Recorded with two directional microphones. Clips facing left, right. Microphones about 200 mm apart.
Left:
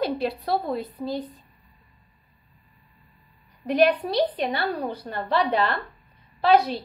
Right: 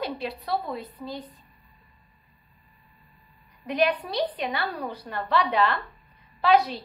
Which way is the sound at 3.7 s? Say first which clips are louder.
Left 5 dB; 35° left (ahead or behind).